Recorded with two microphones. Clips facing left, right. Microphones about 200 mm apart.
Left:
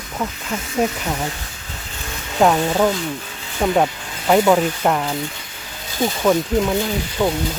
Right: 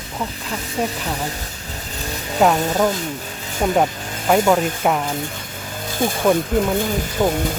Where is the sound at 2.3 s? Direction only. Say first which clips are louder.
Left 1 dB; centre (ahead or behind).